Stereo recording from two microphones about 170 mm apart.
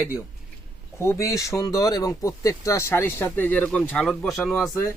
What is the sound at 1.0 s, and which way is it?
Speech, 15° left (ahead or behind).